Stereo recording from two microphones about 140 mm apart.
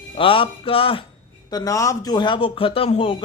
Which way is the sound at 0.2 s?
40° left (ahead or behind).